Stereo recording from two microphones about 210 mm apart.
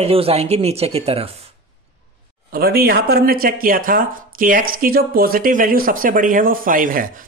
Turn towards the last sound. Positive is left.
turn(degrees=-40)  # may be behind; listen again after turning